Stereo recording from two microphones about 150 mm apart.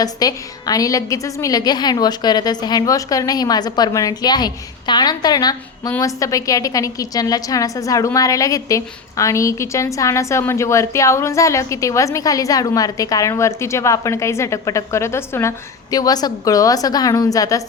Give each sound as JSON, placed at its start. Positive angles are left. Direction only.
{"t": 0.0, "sound": "a woman's voice", "side_deg": 25}